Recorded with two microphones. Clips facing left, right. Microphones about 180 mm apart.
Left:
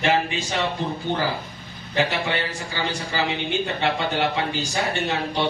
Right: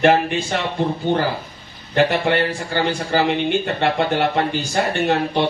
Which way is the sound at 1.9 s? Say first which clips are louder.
Right 6 dB; 55° right (ahead or behind).